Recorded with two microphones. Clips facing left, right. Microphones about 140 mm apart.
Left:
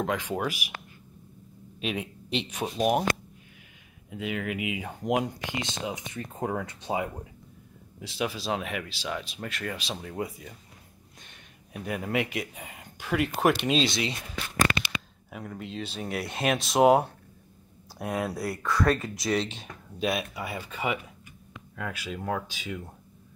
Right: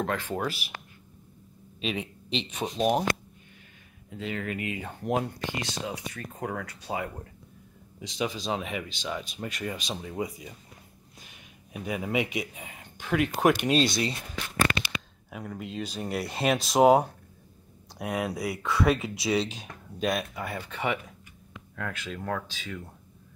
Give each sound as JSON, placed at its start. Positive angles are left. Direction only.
{"t": 0.0, "sound": "speech", "side_deg": 10}
{"t": 1.8, "sound": "a man's voice", "side_deg": 10}
{"t": 4.1, "sound": "speech", "side_deg": 10}
{"t": 8.0, "sound": "speech", "side_deg": 5}
{"t": 15.2, "sound": "speech", "side_deg": 0}